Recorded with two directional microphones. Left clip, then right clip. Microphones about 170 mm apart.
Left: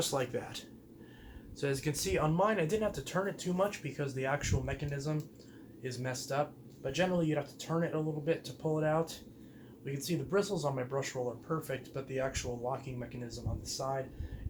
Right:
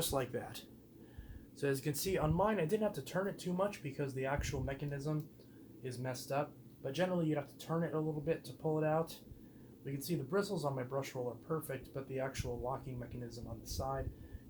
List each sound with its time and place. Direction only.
0.0 s speech: 40° right (ahead or behind); by 14.0 s 25° right (ahead or behind)